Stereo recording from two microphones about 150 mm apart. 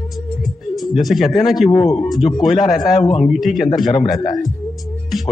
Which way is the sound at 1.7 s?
45° left (ahead or behind).